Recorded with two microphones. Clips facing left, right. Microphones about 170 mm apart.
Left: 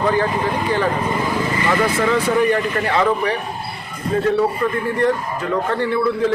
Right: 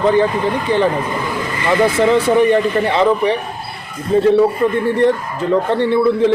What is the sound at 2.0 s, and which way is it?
A man's voice, 30° right (ahead or behind).